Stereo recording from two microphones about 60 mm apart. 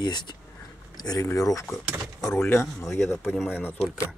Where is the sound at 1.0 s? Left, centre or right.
Left.